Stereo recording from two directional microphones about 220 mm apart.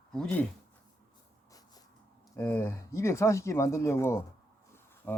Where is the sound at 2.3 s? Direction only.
10° left (ahead or behind).